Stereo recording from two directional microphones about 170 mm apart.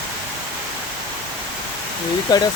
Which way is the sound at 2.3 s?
25° left (ahead or behind).